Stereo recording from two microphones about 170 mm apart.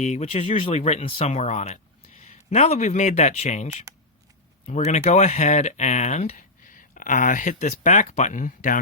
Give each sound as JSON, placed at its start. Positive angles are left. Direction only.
{"t": 0.0, "sound": "speech", "side_deg": 40}